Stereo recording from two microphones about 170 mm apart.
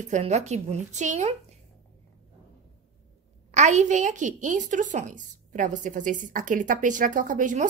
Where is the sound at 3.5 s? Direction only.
45° right (ahead or behind).